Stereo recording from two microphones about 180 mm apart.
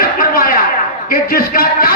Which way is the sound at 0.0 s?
55° left (ahead or behind).